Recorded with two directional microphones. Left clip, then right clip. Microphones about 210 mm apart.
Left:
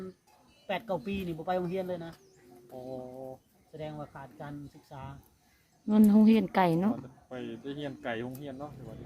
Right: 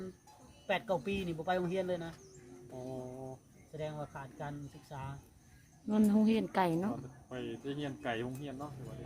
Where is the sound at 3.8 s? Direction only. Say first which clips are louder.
Left 1 dB; 10° right (ahead or behind).